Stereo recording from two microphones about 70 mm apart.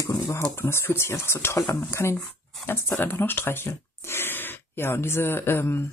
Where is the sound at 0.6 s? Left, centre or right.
Left.